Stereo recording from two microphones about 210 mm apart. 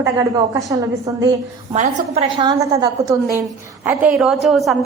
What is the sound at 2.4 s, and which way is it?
A woman's voice, 20° right (ahead or behind).